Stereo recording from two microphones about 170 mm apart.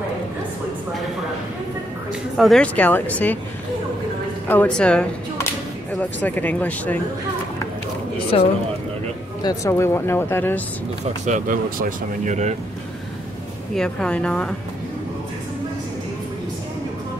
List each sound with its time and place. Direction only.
2.3 s speech: centre (ahead or behind)
4.5 s speech: 10° left (ahead or behind)
8.3 s speech: 35° left (ahead or behind)
9.4 s speech: 20° left (ahead or behind)
11.2 s speech: 50° right (ahead or behind)
13.7 s speech: 5° left (ahead or behind)